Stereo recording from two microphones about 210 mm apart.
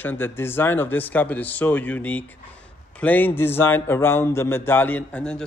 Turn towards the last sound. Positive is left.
turn(degrees=5)  # may be behind; listen again after turning